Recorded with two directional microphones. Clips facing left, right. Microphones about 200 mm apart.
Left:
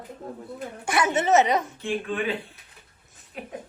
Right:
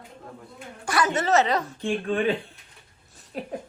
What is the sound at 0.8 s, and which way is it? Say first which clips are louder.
Speech: left 1 dB; 20° left (ahead or behind).